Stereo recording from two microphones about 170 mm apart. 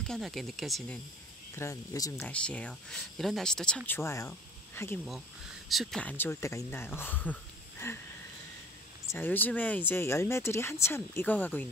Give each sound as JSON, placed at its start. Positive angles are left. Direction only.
{"t": 0.0, "sound": "speech", "side_deg": 0}
{"t": 1.5, "sound": "speech", "side_deg": 15}
{"t": 2.1, "sound": "speech", "side_deg": 5}
{"t": 5.7, "sound": "speech", "side_deg": 0}
{"t": 9.1, "sound": "speech", "side_deg": 10}